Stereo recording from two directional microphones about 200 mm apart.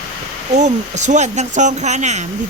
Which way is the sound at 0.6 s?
35° right (ahead or behind).